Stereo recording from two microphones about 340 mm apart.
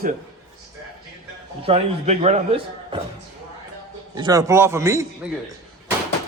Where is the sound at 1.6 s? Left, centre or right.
Centre.